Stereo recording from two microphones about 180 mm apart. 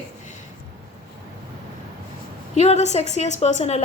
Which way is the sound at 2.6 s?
35° left (ahead or behind).